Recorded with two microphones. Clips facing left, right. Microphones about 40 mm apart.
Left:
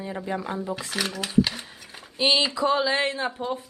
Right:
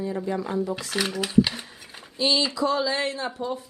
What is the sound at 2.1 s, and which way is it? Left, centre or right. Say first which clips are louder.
Speech: left 1 dB; left.